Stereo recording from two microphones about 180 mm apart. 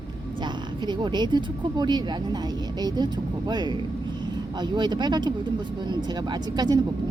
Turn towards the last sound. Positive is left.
turn(degrees=-20)  # may be behind; listen again after turning